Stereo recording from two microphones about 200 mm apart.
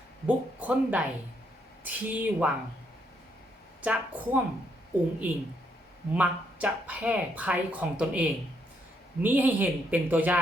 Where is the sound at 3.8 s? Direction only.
10° right (ahead or behind).